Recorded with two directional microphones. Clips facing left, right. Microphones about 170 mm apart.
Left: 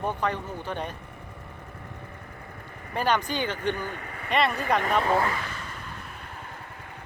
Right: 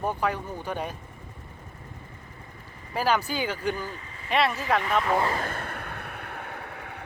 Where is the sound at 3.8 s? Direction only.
65° left (ahead or behind).